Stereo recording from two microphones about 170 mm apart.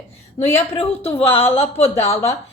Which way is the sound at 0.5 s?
35° left (ahead or behind).